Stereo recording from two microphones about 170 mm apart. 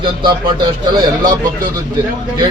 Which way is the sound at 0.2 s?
25° right (ahead or behind).